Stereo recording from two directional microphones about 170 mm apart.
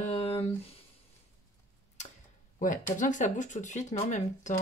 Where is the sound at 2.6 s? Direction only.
50° left (ahead or behind).